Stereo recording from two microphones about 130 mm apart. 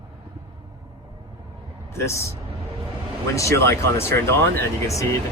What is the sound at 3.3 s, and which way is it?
Speech, 20° left (ahead or behind).